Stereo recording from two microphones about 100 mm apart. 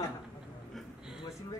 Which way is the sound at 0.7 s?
5° right (ahead or behind).